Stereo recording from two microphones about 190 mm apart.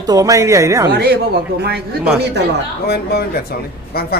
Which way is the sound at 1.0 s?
60° right (ahead or behind).